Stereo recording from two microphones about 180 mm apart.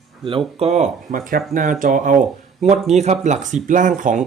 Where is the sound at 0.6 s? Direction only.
40° right (ahead or behind).